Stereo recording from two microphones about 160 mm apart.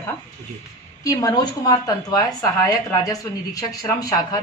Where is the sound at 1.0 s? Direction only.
25° left (ahead or behind).